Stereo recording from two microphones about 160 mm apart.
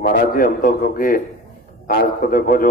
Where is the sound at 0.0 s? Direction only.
60° left (ahead or behind).